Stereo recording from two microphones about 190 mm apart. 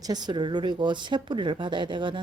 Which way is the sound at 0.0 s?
20° right (ahead or behind).